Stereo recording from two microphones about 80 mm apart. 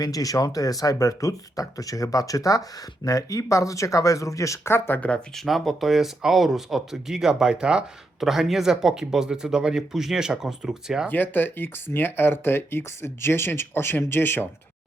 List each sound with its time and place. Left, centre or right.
0.0 s speech: left
4.9 s speech: centre
11.1 s speech: left